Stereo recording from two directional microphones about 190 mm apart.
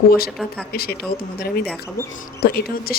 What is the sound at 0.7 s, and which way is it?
Speech, 55° left (ahead or behind).